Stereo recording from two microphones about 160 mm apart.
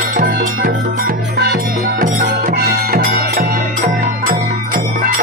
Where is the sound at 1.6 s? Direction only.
60° right (ahead or behind).